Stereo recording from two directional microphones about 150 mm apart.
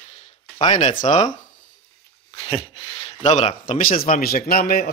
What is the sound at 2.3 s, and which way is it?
Speech, 35° left (ahead or behind).